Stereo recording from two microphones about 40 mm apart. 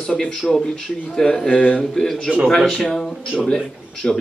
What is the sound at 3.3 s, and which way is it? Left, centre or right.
Speech, centre.